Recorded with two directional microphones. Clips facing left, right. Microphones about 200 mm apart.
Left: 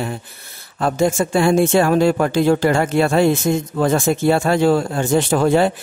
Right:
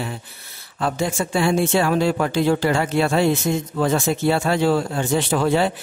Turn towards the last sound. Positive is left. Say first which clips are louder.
# left 4 dB
turn(degrees=50)  # may be behind; listen again after turning